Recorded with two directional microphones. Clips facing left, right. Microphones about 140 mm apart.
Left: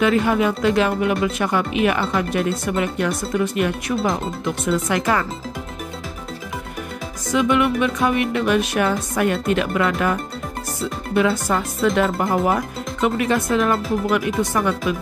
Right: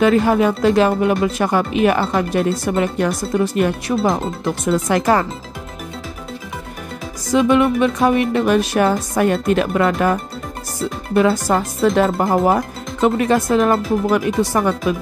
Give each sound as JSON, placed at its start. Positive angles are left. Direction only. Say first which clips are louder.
{"t": 0.0, "sound": "speech", "louder": "right 4 dB", "side_deg": -40}
{"t": 7.3, "sound": "speech", "louder": "right 4 dB", "side_deg": -35}
{"t": 11.1, "sound": "speech", "louder": "right 4 dB", "side_deg": -40}